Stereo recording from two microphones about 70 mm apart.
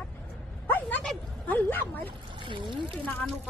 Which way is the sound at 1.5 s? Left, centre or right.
Left.